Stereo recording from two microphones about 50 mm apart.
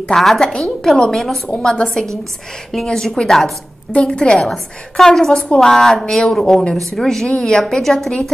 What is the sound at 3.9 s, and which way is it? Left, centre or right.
A woman's voice, centre.